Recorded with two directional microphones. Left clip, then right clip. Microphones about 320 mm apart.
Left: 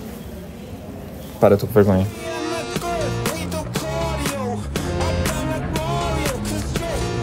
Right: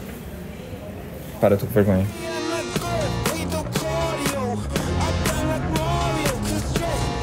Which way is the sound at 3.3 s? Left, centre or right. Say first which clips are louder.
Even; centre.